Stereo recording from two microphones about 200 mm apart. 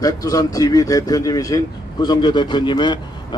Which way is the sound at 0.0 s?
20° left (ahead or behind).